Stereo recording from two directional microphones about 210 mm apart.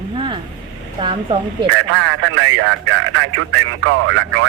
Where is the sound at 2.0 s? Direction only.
70° right (ahead or behind).